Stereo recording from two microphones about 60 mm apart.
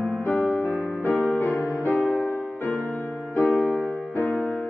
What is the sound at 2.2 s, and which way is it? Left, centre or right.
Music, left.